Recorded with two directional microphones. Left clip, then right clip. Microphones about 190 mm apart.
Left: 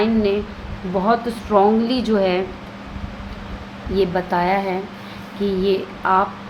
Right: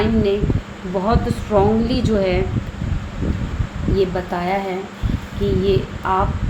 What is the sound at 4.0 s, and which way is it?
Speech, 25° left (ahead or behind).